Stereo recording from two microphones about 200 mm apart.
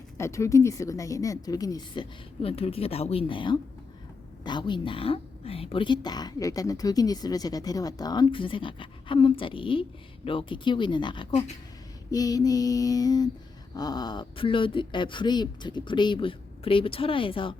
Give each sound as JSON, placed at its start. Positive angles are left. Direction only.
{"t": 0.2, "sound": "a woman's voice", "side_deg": 15}
{"t": 12.1, "sound": "a woman's voice", "side_deg": 20}